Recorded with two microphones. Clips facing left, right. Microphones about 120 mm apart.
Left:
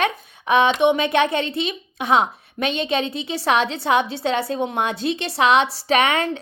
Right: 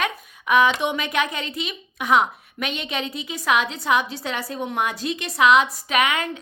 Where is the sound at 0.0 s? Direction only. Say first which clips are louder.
Left 4 dB; 30° left (ahead or behind).